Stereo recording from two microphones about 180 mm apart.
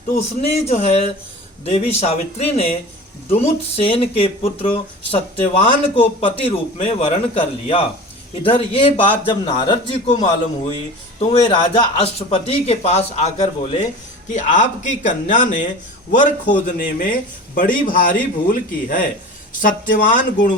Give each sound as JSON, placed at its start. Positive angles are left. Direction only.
{"t": 0.2, "sound": "a man's voice", "side_deg": 35}